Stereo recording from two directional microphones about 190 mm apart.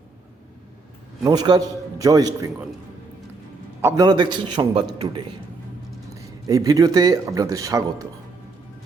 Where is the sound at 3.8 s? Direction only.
20° right (ahead or behind).